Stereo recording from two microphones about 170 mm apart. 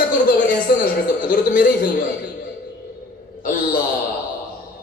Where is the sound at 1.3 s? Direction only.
55° left (ahead or behind).